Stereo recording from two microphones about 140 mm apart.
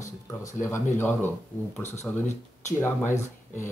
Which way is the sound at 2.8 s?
15° left (ahead or behind).